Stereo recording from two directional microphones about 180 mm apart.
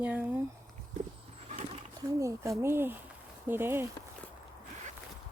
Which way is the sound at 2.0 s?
20° right (ahead or behind).